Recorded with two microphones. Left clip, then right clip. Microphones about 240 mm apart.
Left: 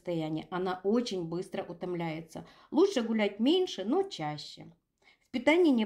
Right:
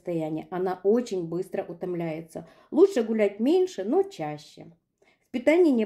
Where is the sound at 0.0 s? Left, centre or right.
Left.